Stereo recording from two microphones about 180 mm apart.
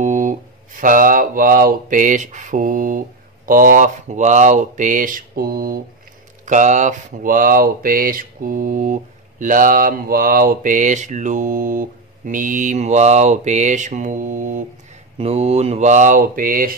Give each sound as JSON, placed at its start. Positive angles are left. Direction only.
{"t": 0.0, "sound": "speech", "side_deg": -45}
{"t": 6.4, "sound": "speech", "side_deg": -45}
{"t": 15.1, "sound": "speech", "side_deg": -35}